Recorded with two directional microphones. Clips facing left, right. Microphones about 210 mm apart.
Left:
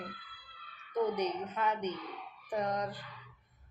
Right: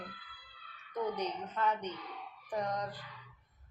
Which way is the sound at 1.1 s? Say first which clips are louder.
Left 4 dB; 15° left (ahead or behind).